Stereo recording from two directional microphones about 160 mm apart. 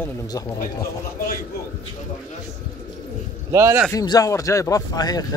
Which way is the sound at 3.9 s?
25° left (ahead or behind).